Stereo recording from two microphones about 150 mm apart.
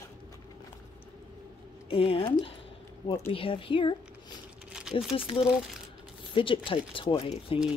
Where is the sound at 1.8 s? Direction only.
40° left (ahead or behind).